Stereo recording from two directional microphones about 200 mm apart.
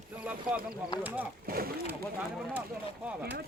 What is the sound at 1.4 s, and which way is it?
Speech, 50° right (ahead or behind).